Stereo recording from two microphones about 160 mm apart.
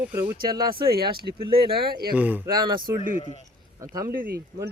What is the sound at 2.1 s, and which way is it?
Speech, 10° right (ahead or behind).